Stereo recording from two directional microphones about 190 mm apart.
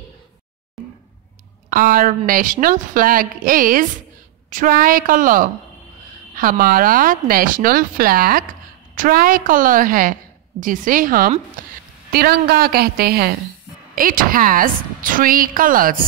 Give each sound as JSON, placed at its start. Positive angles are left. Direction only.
{"t": 1.7, "sound": "a woman's voice", "side_deg": -45}
{"t": 11.6, "sound": "a sound", "side_deg": -45}
{"t": 12.1, "sound": "a woman's voice", "side_deg": -55}